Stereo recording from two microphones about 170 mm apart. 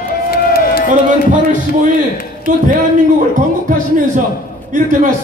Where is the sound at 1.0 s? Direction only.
50° right (ahead or behind).